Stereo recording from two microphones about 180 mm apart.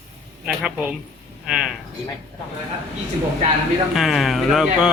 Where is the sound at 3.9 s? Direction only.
Centre (ahead or behind).